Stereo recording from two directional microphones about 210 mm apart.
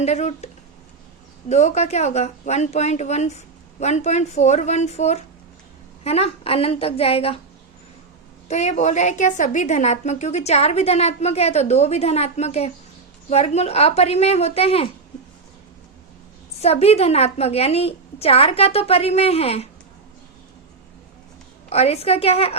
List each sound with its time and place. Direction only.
0.0 s a woman's voice: 30° left (ahead or behind)
8.4 s a woman's voice: 35° left (ahead or behind)
16.6 s a woman's voice: 30° left (ahead or behind)
21.7 s a woman's voice: 30° left (ahead or behind)